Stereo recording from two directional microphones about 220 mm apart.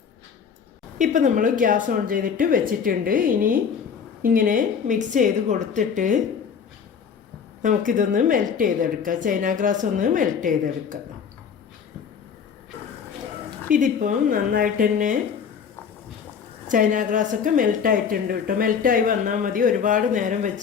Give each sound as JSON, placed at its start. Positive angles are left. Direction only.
{"t": 0.9, "sound": "a woman's voice", "side_deg": -35}
{"t": 7.6, "sound": "a woman's voice", "side_deg": -35}
{"t": 13.7, "sound": "a woman's voice", "side_deg": -35}
{"t": 16.6, "sound": "a woman's voice", "side_deg": -35}